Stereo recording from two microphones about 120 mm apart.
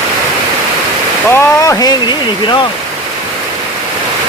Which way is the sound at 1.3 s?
25° left (ahead or behind).